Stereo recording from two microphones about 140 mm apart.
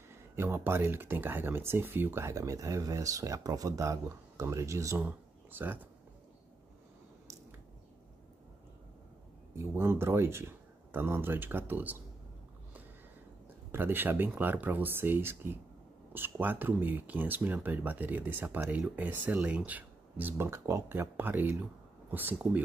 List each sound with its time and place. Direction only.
0.1 s speech: 15° right (ahead or behind)
9.6 s speech: 15° right (ahead or behind)
13.7 s speech: 15° right (ahead or behind)